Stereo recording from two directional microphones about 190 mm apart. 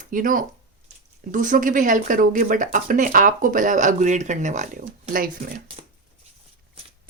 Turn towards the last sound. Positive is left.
turn(degrees=-50)  # may be behind; listen again after turning